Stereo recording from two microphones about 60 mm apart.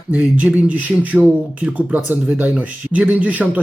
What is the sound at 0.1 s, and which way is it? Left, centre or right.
Speech, right.